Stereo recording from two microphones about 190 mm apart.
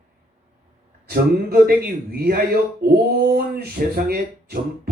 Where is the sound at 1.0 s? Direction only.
55° right (ahead or behind).